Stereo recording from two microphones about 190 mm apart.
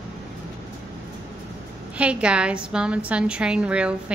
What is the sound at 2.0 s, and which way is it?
A woman's voice, 5° right (ahead or behind).